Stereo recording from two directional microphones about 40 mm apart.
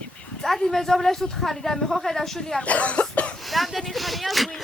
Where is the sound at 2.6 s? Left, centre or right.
Left.